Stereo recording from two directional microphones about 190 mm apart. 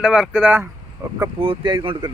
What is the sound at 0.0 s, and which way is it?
Speech, 5° right (ahead or behind).